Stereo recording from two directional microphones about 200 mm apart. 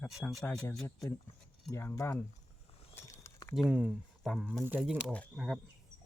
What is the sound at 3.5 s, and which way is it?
Speech, centre (ahead or behind).